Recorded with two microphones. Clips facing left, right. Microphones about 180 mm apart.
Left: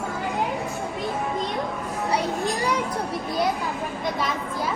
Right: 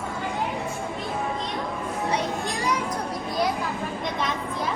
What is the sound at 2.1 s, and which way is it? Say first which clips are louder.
Children playing: left 2 dB; 30° left (ahead or behind).